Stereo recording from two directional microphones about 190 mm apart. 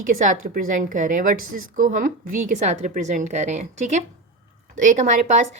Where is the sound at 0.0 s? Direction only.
45° right (ahead or behind).